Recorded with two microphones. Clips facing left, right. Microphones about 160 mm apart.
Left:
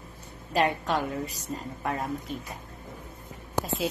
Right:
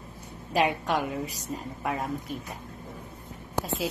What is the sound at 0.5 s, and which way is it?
A woman's voice, 10° right (ahead or behind).